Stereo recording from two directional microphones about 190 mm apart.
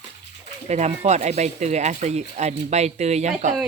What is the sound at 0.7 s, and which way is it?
Speech, 35° right (ahead or behind).